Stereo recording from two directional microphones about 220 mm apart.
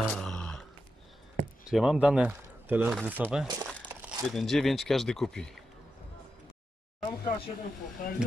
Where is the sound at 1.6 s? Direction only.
Centre (ahead or behind).